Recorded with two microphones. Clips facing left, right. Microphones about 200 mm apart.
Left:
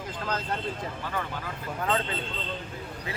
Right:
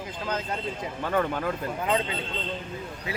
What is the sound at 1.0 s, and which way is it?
Speech, 50° right (ahead or behind).